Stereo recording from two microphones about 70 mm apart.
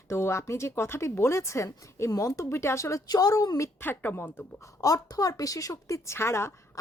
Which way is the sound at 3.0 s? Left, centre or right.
Left.